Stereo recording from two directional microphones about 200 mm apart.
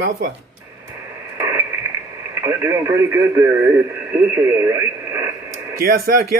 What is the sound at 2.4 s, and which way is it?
Speech, 15° right (ahead or behind).